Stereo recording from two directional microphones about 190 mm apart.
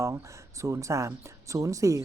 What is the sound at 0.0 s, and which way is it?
Speech, 15° right (ahead or behind).